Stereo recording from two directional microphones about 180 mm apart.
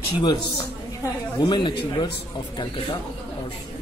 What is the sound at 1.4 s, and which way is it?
Speech, 25° left (ahead or behind).